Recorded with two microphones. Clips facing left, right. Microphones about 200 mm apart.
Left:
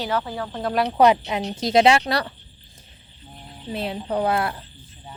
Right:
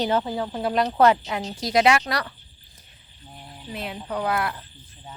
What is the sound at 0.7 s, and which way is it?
Speech, 5° left (ahead or behind).